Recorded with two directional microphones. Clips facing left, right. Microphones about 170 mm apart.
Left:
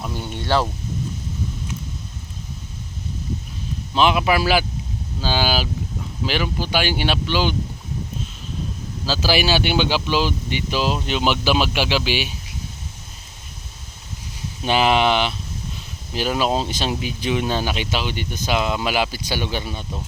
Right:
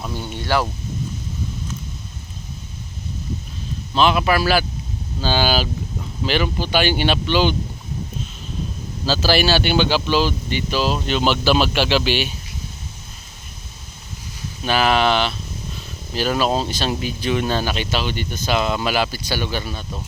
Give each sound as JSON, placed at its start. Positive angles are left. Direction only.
{"t": 0.3, "sound": "speech", "side_deg": 25}
{"t": 3.9, "sound": "speech", "side_deg": 15}
{"t": 9.0, "sound": "speech", "side_deg": 10}
{"t": 14.6, "sound": "speech", "side_deg": 20}